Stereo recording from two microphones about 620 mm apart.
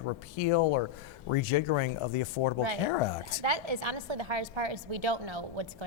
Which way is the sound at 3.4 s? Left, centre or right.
Right.